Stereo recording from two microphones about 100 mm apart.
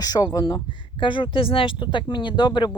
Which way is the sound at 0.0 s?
40° left (ahead or behind).